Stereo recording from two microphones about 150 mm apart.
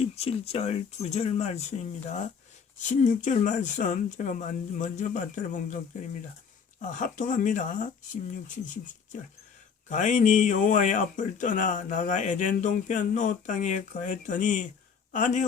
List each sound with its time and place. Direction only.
0.0 s speech: 40° left (ahead or behind); by 5.8 s 60° left (ahead or behind)
6.9 s speech: 60° left (ahead or behind)
9.9 s speech: 55° left (ahead or behind)